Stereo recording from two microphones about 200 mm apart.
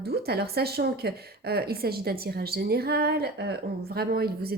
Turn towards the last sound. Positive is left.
turn(degrees=-50)  # may be behind; listen again after turning